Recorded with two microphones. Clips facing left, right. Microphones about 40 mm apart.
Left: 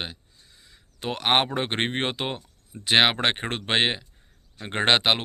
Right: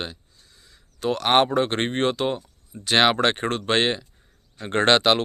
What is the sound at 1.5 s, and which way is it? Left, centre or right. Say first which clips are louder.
Speech: right 4 dB; left.